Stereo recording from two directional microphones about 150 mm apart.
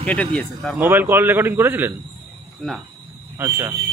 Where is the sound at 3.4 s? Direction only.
15° right (ahead or behind).